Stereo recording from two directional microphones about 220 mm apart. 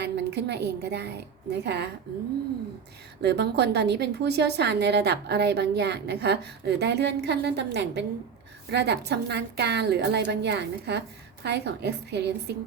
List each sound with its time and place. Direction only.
0.0 s a woman's voice: 50° right (ahead or behind)
3.2 s a woman's voice: 50° right (ahead or behind)